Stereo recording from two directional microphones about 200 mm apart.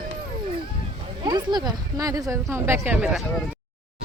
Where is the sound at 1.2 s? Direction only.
20° right (ahead or behind).